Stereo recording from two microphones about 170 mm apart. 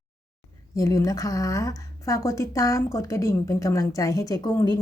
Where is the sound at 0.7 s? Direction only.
20° left (ahead or behind).